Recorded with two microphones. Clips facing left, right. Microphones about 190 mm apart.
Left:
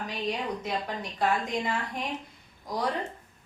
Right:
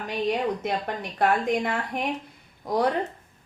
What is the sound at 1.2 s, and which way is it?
A woman's voice, 60° right (ahead or behind).